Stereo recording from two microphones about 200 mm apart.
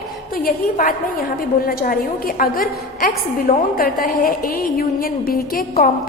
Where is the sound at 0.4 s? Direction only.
45° left (ahead or behind).